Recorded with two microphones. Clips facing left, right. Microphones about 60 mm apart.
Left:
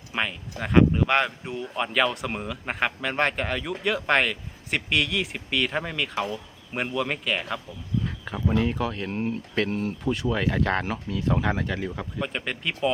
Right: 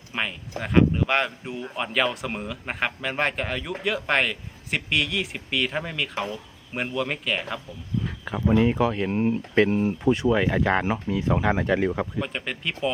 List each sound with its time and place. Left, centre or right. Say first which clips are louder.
0.1 s speech: even; centre
8.4 s speech: right 5 dB; centre
10.2 s speech: right 1 dB; centre
12.2 s speech: left 1 dB; centre